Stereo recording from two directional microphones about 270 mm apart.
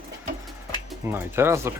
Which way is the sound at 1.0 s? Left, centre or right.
Centre.